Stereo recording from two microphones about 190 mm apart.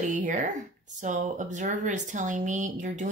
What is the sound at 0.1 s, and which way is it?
Speech, 40° right (ahead or behind).